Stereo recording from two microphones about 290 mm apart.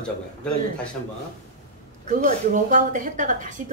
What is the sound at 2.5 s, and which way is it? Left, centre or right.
A woman's voice, right.